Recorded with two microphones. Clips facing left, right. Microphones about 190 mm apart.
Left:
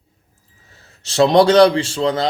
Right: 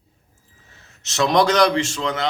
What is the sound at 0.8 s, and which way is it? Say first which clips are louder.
Speech: left 6 dB; 30° left (ahead or behind).